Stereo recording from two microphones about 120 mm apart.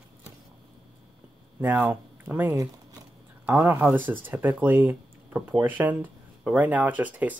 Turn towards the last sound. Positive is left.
turn(degrees=-15)  # may be behind; listen again after turning